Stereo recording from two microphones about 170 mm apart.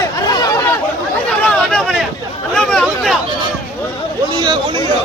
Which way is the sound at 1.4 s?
5° left (ahead or behind).